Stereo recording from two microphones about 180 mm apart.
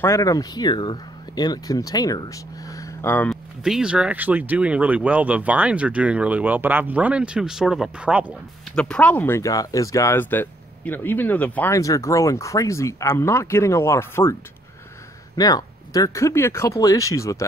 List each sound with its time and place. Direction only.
0.0 s speech: 15° left (ahead or behind)
3.6 s speech: 5° right (ahead or behind)
8.7 s speech: 5° left (ahead or behind)
15.3 s speech: 20° left (ahead or behind)